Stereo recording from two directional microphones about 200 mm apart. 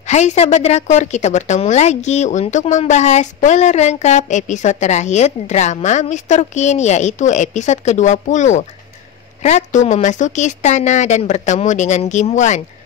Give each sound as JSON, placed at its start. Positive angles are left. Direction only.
{"t": 0.1, "sound": "a woman's voice", "side_deg": 35}